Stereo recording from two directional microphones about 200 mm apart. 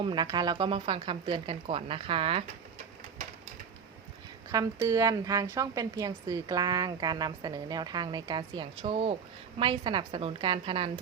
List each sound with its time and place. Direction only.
0.0 s a woman's voice: 20° right (ahead or behind)
4.5 s a woman's voice: 15° right (ahead or behind)